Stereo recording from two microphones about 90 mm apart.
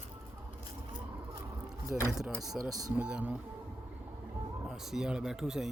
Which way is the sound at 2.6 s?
15° right (ahead or behind).